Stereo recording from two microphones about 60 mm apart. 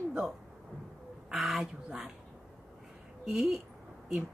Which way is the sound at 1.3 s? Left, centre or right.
Centre.